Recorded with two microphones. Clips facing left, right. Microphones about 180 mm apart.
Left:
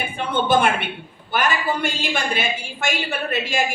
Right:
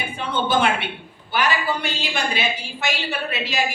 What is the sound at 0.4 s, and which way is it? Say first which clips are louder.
A woman's voice: left 2 dB; 50° left (ahead or behind).